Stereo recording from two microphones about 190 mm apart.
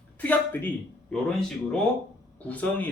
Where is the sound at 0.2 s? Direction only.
10° left (ahead or behind).